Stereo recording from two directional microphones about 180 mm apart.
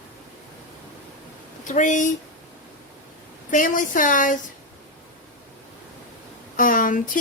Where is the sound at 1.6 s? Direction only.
45° left (ahead or behind).